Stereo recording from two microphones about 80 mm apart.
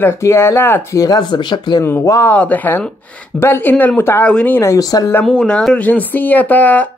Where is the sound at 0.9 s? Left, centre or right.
Left.